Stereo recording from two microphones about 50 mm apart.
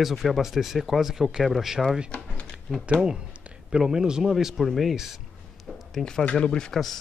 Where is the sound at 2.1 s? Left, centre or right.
Left.